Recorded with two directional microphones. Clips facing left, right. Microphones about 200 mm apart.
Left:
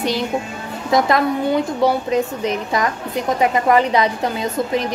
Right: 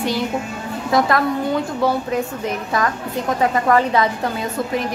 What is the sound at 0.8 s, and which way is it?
A woman's voice, 20° left (ahead or behind).